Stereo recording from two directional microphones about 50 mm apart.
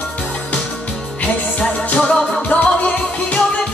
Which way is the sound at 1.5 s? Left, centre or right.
Left.